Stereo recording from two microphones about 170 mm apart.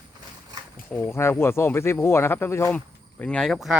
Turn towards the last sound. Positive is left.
turn(degrees=0)  # may be behind; listen again after turning